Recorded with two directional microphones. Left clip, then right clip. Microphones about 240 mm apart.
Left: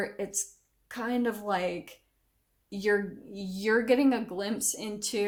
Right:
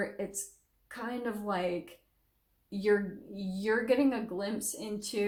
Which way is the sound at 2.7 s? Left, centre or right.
Left.